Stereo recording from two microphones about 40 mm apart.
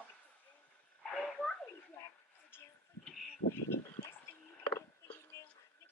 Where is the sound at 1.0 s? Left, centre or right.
Left.